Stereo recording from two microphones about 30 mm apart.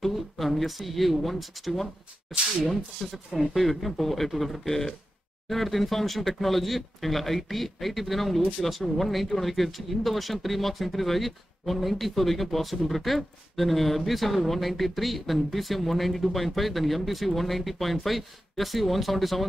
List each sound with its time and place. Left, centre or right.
0.0 s speech: centre